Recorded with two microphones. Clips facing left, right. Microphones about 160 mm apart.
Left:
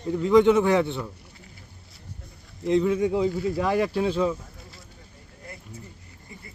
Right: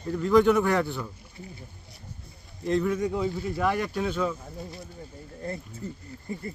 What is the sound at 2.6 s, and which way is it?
Speech, 20° left (ahead or behind).